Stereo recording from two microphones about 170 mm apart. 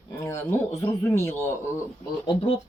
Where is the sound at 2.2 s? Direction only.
30° left (ahead or behind).